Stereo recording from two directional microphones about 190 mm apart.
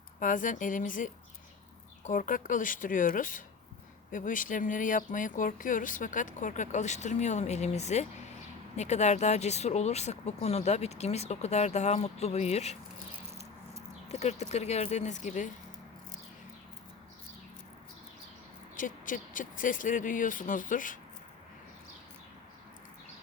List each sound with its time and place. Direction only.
0.2 s speech: 45° left (ahead or behind)
14.1 s speech: 35° left (ahead or behind)
18.8 s speech: 45° left (ahead or behind)